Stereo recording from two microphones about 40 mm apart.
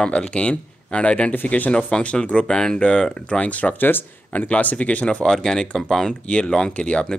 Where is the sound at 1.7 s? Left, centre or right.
Left.